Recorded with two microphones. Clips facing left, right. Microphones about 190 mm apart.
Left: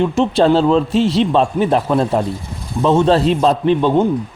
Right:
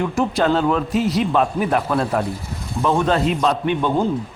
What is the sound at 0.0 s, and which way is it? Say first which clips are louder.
Speech: left 5 dB; 25° left (ahead or behind).